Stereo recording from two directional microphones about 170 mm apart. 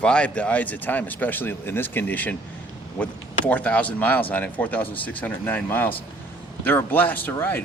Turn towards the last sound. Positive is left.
turn(degrees=10)  # may be behind; listen again after turning